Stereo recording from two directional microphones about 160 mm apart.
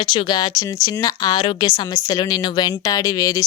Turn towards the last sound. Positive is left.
turn(degrees=25)  # may be behind; listen again after turning